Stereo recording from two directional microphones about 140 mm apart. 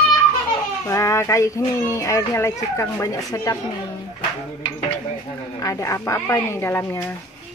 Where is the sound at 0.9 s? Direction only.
20° left (ahead or behind).